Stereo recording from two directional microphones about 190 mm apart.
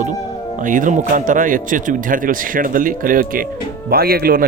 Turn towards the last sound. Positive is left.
turn(degrees=-50)  # may be behind; listen again after turning